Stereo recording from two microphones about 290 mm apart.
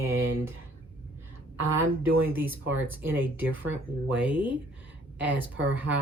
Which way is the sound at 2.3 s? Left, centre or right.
Centre.